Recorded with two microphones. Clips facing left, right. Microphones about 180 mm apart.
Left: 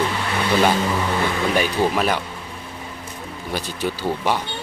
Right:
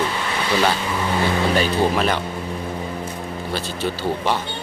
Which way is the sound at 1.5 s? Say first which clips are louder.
Right 1 dB; 10° left (ahead or behind).